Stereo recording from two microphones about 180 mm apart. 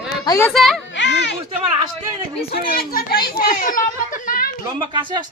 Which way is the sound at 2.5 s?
55° left (ahead or behind).